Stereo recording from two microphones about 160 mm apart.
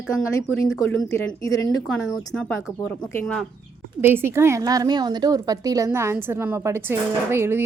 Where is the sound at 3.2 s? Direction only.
5° left (ahead or behind).